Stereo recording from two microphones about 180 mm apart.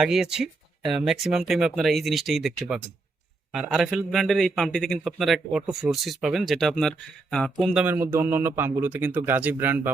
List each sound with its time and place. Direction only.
0.0 s a man's voice: 5° right (ahead or behind)